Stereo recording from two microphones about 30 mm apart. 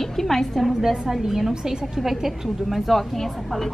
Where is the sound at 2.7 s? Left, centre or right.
Centre.